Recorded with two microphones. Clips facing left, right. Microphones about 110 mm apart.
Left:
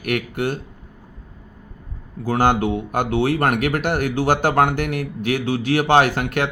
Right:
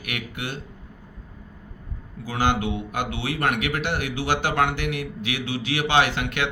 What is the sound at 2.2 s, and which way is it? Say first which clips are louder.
Speech: left 6 dB; 50° left (ahead or behind).